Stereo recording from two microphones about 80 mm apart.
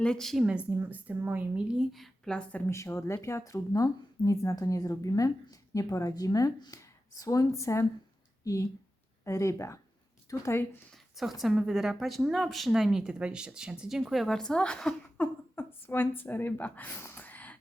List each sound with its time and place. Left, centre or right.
0.0 s speech: centre
0.8 s a woman's voice: right
1.5 s speech: centre
2.3 s speech: centre
2.6 s speech: left
9.2 s speech: left
10.9 s speech: centre
15.2 s speech: left
17.0 s a sound: left